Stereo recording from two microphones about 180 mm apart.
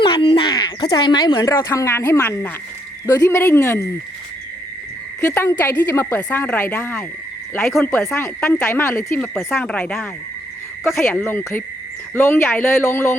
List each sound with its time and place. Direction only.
0.0 s speech: 30° left (ahead or behind)
5.3 s speech: 10° left (ahead or behind)
7.9 s speech: 15° left (ahead or behind)
9.2 s speech: 5° left (ahead or behind)